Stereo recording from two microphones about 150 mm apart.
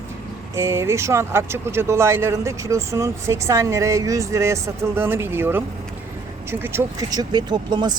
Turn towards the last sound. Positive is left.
turn(degrees=-30)  # may be behind; listen again after turning